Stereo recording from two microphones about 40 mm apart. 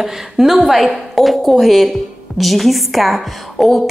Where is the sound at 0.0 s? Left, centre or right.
Centre.